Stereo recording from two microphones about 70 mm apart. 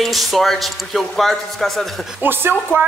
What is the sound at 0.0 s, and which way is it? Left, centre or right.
Speech, centre.